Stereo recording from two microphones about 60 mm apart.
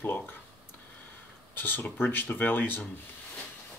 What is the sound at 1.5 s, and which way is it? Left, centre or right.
Speech, left.